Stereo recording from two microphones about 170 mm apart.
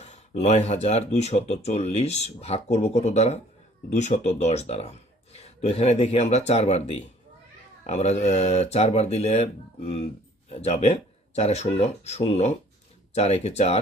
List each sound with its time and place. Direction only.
0.0 s speech: 40° left (ahead or behind)